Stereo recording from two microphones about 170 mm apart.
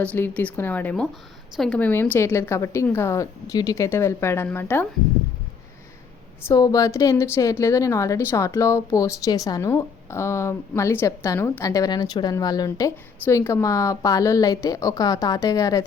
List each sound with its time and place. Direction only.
0.0 s a woman's voice: 10° left (ahead or behind)
6.5 s speech: 20° left (ahead or behind)